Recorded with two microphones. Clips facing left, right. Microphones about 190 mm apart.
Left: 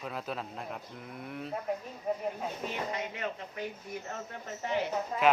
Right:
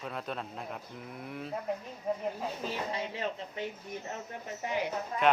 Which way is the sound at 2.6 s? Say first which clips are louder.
Even; 30° right (ahead or behind).